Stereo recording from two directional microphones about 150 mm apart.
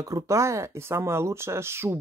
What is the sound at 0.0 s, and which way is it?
Speech, 20° right (ahead or behind).